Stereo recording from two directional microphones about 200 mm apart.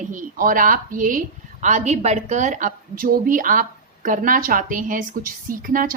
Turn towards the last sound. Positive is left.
turn(degrees=-45)  # may be behind; listen again after turning